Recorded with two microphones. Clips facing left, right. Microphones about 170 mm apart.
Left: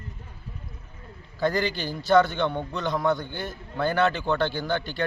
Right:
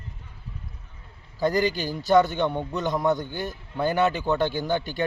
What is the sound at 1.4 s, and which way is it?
Speech, 15° right (ahead or behind).